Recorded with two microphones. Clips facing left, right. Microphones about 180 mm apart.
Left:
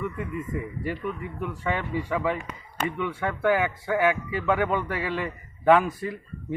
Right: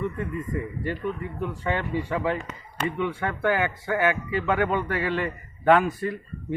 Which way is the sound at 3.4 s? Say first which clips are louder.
Left 1 dB; 5° left (ahead or behind).